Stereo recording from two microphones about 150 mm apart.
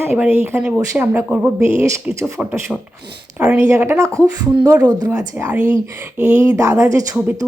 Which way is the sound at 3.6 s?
20° right (ahead or behind).